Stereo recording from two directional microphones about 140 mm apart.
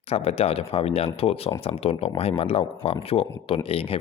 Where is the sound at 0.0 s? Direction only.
45° left (ahead or behind).